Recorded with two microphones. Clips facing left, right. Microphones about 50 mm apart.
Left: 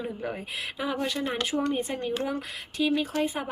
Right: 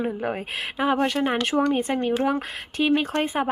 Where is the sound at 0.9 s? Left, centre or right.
Right.